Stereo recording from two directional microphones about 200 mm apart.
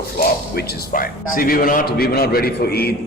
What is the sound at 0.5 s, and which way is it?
Speech, 50° left (ahead or behind).